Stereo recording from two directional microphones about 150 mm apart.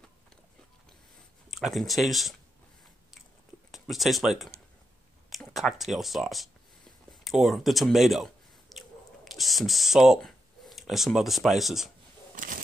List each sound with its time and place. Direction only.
1.5 s speech: centre (ahead or behind)
3.7 s speech: centre (ahead or behind)
7.1 s a sound: centre (ahead or behind)
12.4 s vehicle: 65° right (ahead or behind)